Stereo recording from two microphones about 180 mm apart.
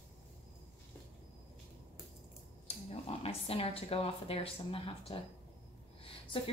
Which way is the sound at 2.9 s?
35° left (ahead or behind).